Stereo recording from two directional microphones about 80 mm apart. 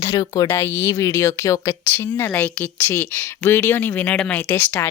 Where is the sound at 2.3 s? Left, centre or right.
Centre.